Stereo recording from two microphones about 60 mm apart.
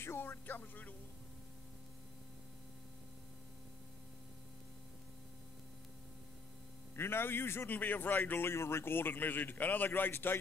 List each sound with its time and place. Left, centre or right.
0.0 s speech: left
7.0 s speech: left
8.5 s speech: left